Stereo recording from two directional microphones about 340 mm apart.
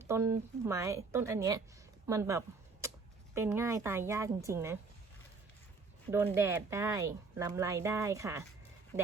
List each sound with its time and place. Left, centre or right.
0.0 s speech: centre
6.1 s speech: centre